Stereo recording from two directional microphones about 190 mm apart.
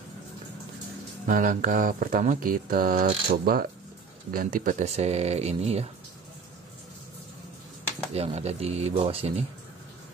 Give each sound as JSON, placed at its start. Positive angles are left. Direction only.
{"t": 1.2, "sound": "speech", "side_deg": -45}
{"t": 8.1, "sound": "speech", "side_deg": -35}